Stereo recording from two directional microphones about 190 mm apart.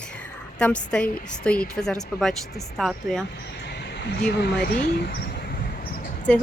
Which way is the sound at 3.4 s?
60° left (ahead or behind).